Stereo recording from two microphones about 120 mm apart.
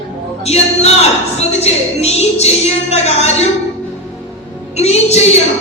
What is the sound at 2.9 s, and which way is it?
Speech, 65° left (ahead or behind).